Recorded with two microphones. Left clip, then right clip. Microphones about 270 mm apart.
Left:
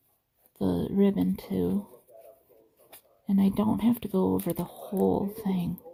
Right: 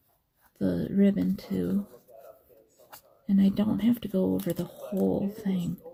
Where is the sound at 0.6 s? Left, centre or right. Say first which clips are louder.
Left 1 dB; left.